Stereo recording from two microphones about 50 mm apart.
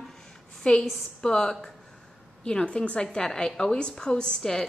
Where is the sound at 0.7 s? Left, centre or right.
Left.